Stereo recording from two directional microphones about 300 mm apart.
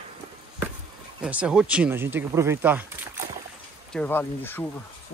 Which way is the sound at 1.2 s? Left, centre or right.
Centre.